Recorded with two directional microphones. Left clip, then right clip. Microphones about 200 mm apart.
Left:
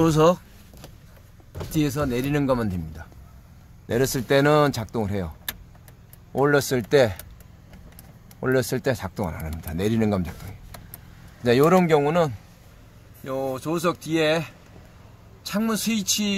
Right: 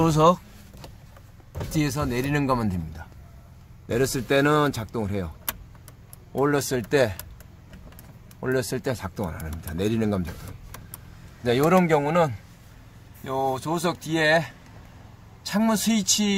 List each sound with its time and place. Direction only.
0.0 s speech: 15° left (ahead or behind)
1.7 s speech: 10° left (ahead or behind)
3.8 s speech: 25° left (ahead or behind)
6.3 s speech: 20° left (ahead or behind)
8.4 s speech: 25° left (ahead or behind)
11.4 s speech: 25° left (ahead or behind)
13.2 s speech: 5° left (ahead or behind)